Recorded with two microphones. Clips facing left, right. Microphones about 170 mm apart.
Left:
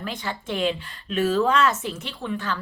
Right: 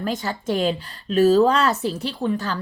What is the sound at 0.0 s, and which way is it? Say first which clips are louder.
A woman's voice: right 6 dB; 40° right (ahead or behind).